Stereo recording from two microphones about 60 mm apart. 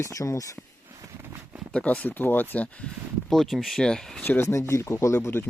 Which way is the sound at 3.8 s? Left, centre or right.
Centre.